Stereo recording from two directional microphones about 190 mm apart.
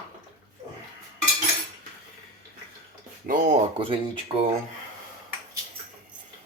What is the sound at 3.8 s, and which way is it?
Speech, 25° right (ahead or behind).